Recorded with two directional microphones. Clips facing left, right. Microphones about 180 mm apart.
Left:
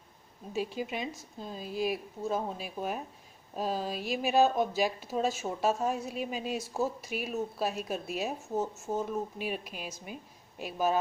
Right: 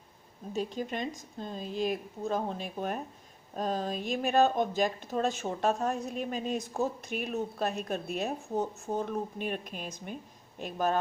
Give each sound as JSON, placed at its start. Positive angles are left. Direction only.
{"t": 0.5, "sound": "speech", "side_deg": 10}